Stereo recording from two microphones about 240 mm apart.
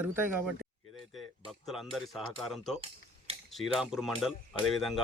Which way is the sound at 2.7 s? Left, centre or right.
Right.